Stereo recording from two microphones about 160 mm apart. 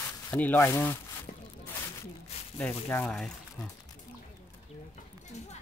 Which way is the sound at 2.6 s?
10° left (ahead or behind).